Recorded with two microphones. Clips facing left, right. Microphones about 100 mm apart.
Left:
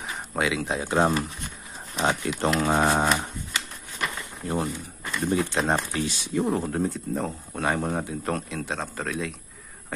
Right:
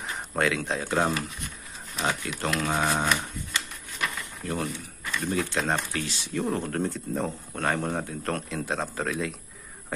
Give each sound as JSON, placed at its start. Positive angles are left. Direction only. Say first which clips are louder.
{"t": 0.0, "sound": "a sound", "louder": "even", "side_deg": 5}
{"t": 0.7, "sound": "speech", "louder": "left 3 dB", "side_deg": 15}
{"t": 2.0, "sound": "speech", "louder": "left 4 dB", "side_deg": 30}
{"t": 4.4, "sound": "speech", "louder": "left 3 dB", "side_deg": 30}